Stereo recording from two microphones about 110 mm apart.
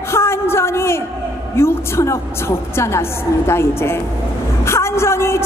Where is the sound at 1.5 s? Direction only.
25° left (ahead or behind).